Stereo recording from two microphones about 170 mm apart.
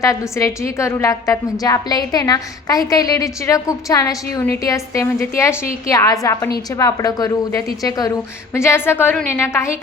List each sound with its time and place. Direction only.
0.0 s a woman's voice: 20° left (ahead or behind)